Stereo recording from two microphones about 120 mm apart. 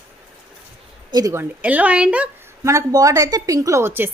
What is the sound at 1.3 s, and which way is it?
A woman's voice, 15° right (ahead or behind).